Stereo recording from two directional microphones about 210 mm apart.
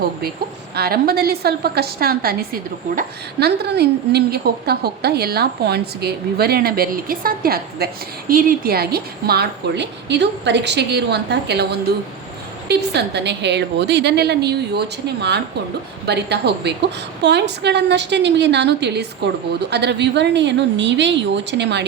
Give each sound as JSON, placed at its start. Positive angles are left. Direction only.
{"t": 0.8, "sound": "a woman's voice", "side_deg": -45}
{"t": 16.0, "sound": "a woman's voice", "side_deg": -50}